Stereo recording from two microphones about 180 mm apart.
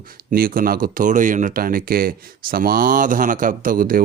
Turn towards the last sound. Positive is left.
turn(degrees=-50)  # may be behind; listen again after turning